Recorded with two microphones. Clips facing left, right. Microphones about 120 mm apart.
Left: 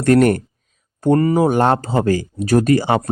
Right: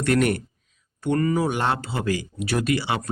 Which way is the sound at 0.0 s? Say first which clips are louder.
Left 8 dB; 40° left (ahead or behind).